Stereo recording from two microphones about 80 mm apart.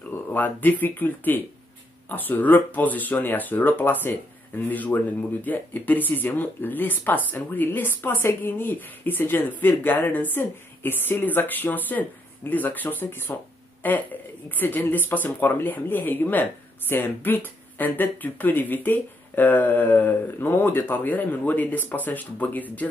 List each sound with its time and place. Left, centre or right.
0.3 s speech: left